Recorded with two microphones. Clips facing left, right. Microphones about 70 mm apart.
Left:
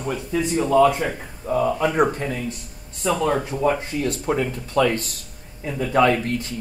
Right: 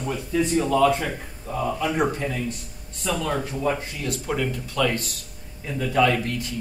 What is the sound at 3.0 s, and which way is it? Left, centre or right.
Speech, left.